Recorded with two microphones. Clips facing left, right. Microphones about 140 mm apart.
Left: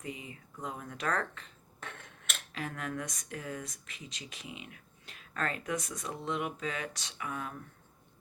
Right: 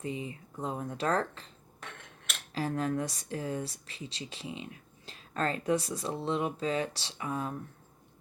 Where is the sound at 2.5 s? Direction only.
30° right (ahead or behind).